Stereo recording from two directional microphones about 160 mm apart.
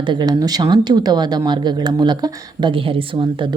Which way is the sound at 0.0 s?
30° right (ahead or behind).